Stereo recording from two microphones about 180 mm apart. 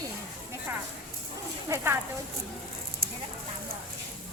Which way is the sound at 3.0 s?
55° right (ahead or behind).